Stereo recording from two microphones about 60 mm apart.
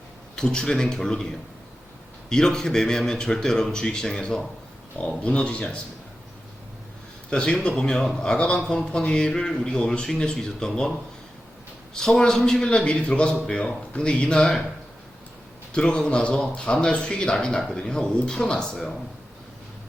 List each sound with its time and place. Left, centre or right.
0.3 s a man's voice: centre
7.3 s a man's voice: centre
11.9 s a man's voice: centre
15.7 s a man's voice: centre